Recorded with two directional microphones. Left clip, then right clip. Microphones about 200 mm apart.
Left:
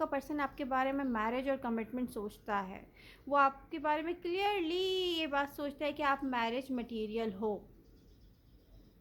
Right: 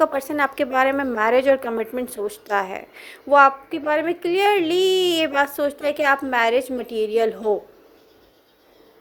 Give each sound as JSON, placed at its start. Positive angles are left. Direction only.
{"t": 0.0, "sound": "a woman's voice", "side_deg": -20}